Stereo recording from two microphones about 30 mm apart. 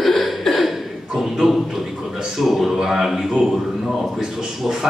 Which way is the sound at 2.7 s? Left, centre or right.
Centre.